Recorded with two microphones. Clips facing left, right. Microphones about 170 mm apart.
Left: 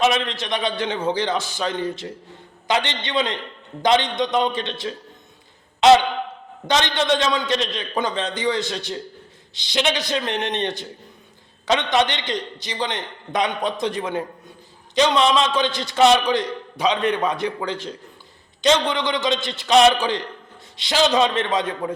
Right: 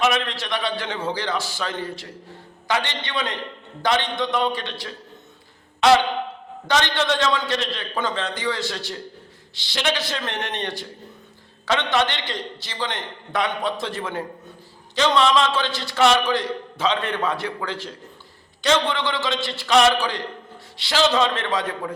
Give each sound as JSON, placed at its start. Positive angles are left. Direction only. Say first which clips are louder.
{"t": 0.0, "sound": "a man's voice", "louder": "left 2 dB", "side_deg": 20}
{"t": 6.7, "sound": "a man's voice", "louder": "left 2 dB", "side_deg": 20}